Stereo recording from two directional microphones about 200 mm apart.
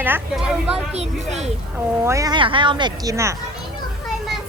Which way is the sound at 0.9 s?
30° right (ahead or behind).